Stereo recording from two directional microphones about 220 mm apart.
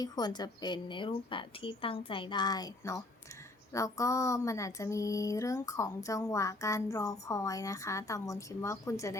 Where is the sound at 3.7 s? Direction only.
15° left (ahead or behind).